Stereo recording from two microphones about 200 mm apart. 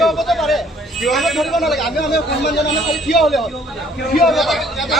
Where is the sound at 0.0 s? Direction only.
Centre (ahead or behind).